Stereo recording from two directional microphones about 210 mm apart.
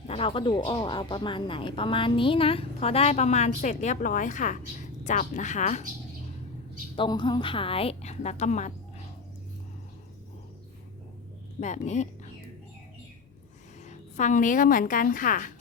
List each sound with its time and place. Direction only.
0.1 s a woman's voice: 25° left (ahead or behind)
6.9 s a woman's voice: 25° left (ahead or behind)
11.6 s speech: 35° left (ahead or behind)
13.8 s a woman's voice: 35° left (ahead or behind)